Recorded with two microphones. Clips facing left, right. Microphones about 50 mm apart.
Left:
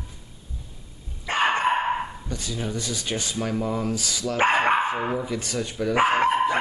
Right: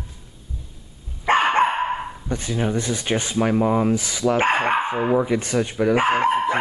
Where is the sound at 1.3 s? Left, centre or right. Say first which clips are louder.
Right 7 dB; right.